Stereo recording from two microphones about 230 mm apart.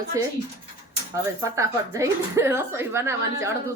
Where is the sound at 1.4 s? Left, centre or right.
Centre.